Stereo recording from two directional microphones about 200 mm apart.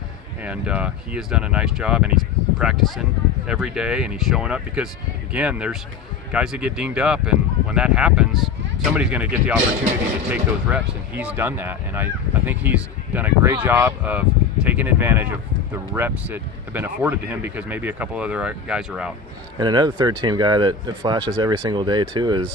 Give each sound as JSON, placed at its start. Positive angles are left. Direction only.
{"t": 0.4, "sound": "speech", "side_deg": -5}
{"t": 19.5, "sound": "speech", "side_deg": -20}